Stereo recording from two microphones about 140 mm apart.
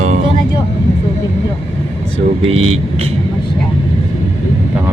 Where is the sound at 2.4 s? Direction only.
45° right (ahead or behind).